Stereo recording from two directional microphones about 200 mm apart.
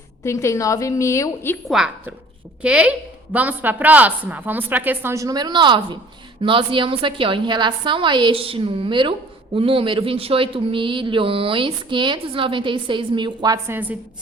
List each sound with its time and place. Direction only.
0.3 s a woman's voice: 15° left (ahead or behind)
1.6 s a woman's voice: centre (ahead or behind)